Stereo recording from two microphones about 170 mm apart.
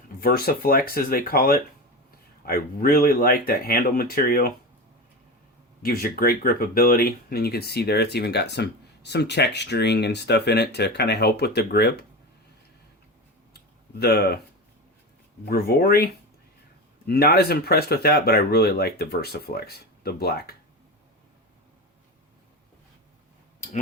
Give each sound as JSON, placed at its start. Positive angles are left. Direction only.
{"t": 0.2, "sound": "speech", "side_deg": 60}
{"t": 5.8, "sound": "speech", "side_deg": 60}
{"t": 14.0, "sound": "speech", "side_deg": 70}
{"t": 15.4, "sound": "speech", "side_deg": 65}
{"t": 17.1, "sound": "speech", "side_deg": 65}